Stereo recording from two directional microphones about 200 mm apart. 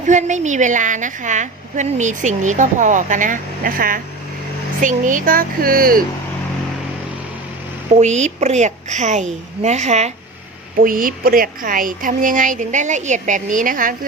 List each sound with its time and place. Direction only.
0.0 s a woman's voice: 35° right (ahead or behind)
7.9 s a woman's voice: 35° right (ahead or behind)